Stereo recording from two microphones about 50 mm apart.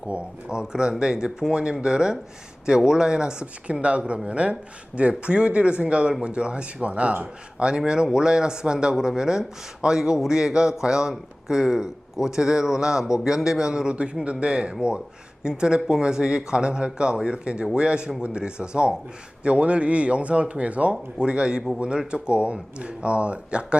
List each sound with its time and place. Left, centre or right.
0.1 s a man's voice: centre
7.8 s a man's voice: centre